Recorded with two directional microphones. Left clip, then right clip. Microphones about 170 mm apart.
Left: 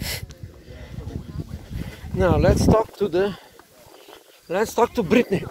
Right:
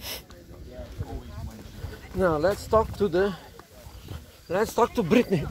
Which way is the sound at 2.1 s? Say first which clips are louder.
Left 4 dB; 50° left (ahead or behind).